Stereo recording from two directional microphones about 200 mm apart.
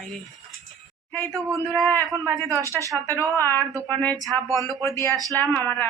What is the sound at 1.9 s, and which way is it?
Speech, 10° left (ahead or behind).